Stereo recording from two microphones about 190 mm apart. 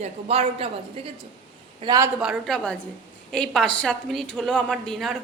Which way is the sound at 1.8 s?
20° right (ahead or behind).